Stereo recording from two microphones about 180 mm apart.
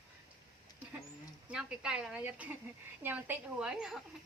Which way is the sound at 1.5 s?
5° right (ahead or behind).